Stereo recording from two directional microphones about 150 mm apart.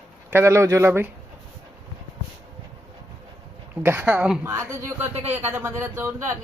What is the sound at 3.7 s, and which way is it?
Speech, 10° right (ahead or behind).